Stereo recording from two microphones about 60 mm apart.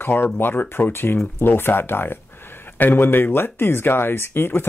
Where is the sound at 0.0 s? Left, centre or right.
Left.